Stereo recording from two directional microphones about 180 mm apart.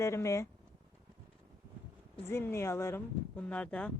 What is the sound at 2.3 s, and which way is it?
Speech, 15° left (ahead or behind).